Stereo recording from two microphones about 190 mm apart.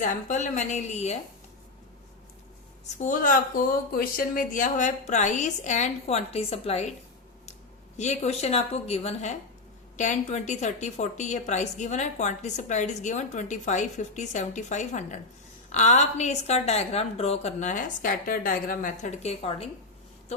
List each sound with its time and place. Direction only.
0.0 s a woman's voice: 40° left (ahead or behind)
2.8 s a woman's voice: 40° left (ahead or behind)
7.9 s a woman's voice: 35° left (ahead or behind)